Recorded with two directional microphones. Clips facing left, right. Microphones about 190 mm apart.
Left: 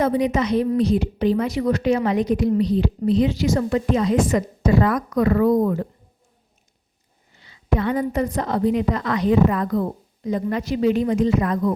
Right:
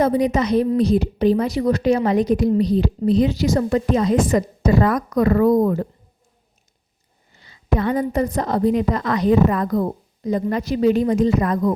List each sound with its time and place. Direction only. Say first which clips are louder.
0.0 s a woman's voice: right 2 dB; 40° right (ahead or behind)
7.4 s a woman's voice: right 1 dB; 40° right (ahead or behind)